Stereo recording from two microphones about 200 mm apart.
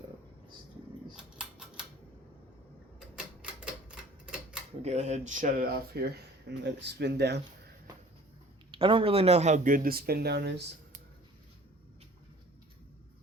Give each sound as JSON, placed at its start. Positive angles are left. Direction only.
{"t": 1.1, "sound": "typewriter", "side_deg": -5}
{"t": 3.2, "sound": "typewriter", "side_deg": -5}
{"t": 4.8, "sound": "speech", "side_deg": -35}
{"t": 8.7, "sound": "speech", "side_deg": -25}